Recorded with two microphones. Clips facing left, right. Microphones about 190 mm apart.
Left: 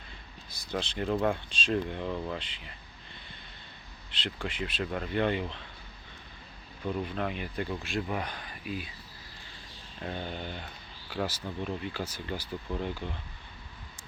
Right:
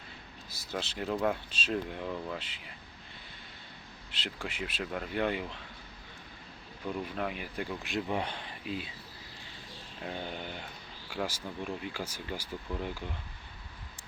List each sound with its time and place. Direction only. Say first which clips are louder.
0.5 s speech: left 3 dB; 5° right (ahead or behind)
4.1 s speech: left 3 dB; 10° right (ahead or behind)
7.0 s speech: left 2 dB; 5° right (ahead or behind); by 8.9 s 25° right (ahead or behind)
10.0 s speech: left 2 dB; 10° right (ahead or behind)